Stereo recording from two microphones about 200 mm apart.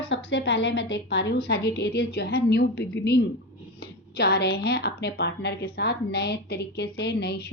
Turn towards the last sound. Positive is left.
turn(degrees=55)  # may be behind; listen again after turning